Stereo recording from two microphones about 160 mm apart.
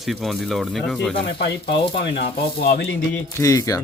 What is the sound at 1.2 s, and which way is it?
Speech, 90° left.